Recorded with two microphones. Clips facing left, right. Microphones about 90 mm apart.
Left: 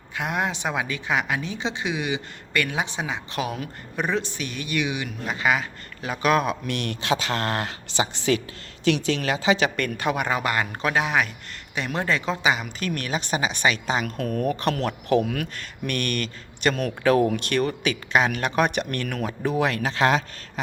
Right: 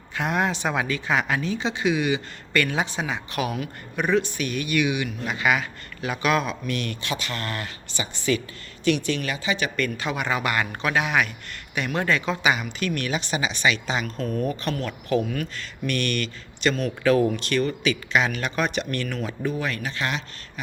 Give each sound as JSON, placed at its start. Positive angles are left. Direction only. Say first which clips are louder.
{"t": 0.2, "sound": "a man's voice", "louder": "right 2 dB", "side_deg": 15}
{"t": 6.4, "sound": "speech", "louder": "left 2 dB", "side_deg": 65}
{"t": 9.8, "sound": "a man's voice", "louder": "left 2 dB", "side_deg": 55}
{"t": 12.6, "sound": "speech", "louder": "right 2 dB", "side_deg": 40}
{"t": 14.4, "sound": "speech", "louder": "left 3 dB", "side_deg": 70}
{"t": 15.5, "sound": "speech", "louder": "right 1 dB", "side_deg": 45}
{"t": 19.5, "sound": "speech", "louder": "left 6 dB", "side_deg": 80}